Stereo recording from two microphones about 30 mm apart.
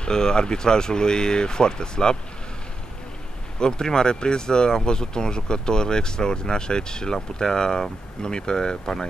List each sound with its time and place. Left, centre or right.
0.0 s speech: left
3.5 s speech: left